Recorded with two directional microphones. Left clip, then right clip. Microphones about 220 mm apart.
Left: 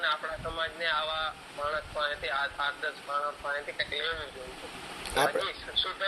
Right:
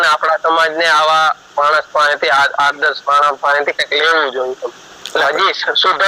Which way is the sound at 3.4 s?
45° right (ahead or behind).